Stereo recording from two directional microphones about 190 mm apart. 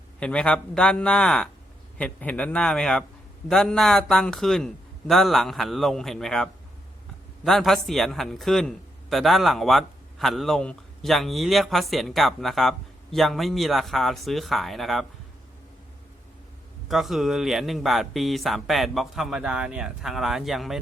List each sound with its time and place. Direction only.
0.2 s a man's voice: 5° left (ahead or behind)
16.9 s a man's voice: centre (ahead or behind)